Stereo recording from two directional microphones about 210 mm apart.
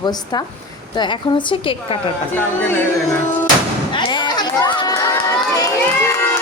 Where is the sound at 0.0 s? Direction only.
20° left (ahead or behind).